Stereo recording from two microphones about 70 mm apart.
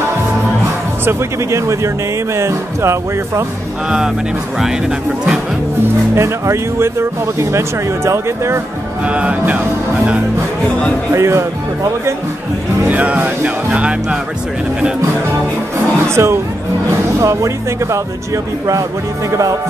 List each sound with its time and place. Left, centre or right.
1.0 s speech: right
6.1 s speech: right
9.0 s music: centre
11.1 s speech: right
12.9 s music: right
16.2 s speech: right